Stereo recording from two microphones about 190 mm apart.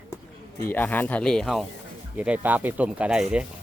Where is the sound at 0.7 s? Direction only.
10° left (ahead or behind).